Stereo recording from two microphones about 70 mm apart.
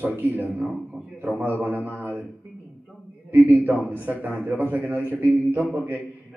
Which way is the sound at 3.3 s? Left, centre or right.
Right.